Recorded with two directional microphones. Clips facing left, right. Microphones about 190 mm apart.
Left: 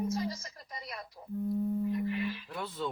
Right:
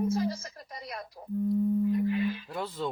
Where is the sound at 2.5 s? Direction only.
30° right (ahead or behind).